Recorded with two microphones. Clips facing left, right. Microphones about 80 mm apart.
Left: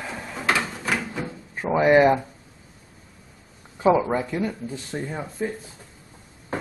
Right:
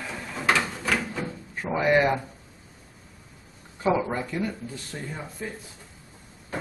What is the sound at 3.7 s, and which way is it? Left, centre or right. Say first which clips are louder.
Speech: left 5 dB; centre.